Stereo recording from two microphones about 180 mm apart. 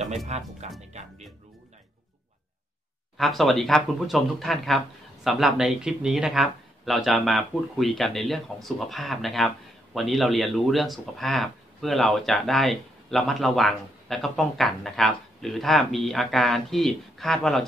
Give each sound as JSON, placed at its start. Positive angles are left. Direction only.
{"t": 0.3, "sound": "speech", "side_deg": -35}
{"t": 3.2, "sound": "speech", "side_deg": 0}